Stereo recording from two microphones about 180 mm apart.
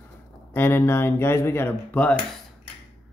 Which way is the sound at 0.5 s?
10° left (ahead or behind).